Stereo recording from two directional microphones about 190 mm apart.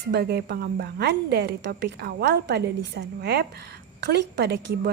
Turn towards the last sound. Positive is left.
turn(degrees=-60)  # may be behind; listen again after turning